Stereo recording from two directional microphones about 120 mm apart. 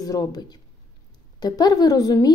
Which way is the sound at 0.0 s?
30° left (ahead or behind).